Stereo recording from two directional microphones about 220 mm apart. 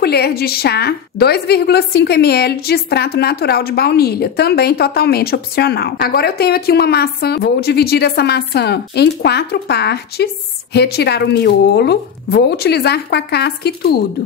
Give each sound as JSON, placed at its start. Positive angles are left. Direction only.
{"t": 0.0, "sound": "a woman's voice", "side_deg": 45}